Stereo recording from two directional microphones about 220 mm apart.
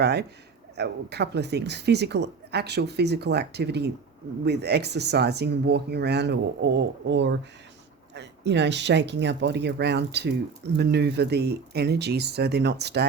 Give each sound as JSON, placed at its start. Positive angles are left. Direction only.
{"t": 0.0, "sound": "a woman's voice", "side_deg": -50}